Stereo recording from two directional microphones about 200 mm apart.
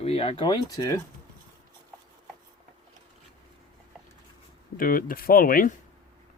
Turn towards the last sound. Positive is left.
turn(degrees=45)  # may be behind; listen again after turning